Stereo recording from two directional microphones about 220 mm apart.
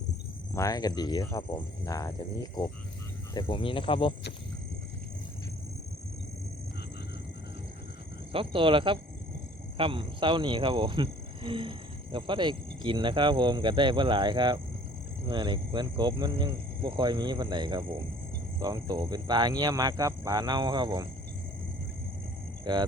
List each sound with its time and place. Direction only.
0.5 s speech: 15° left (ahead or behind)
8.3 s speech: 25° right (ahead or behind)
22.6 s speech: 20° right (ahead or behind)